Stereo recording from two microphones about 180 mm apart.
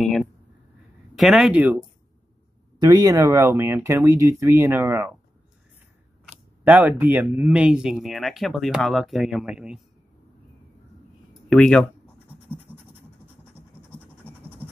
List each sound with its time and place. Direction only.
1.1 s speech: centre (ahead or behind)
2.8 s speech: 20° right (ahead or behind)
6.6 s speech: 10° right (ahead or behind)
11.4 s speech: 5° left (ahead or behind)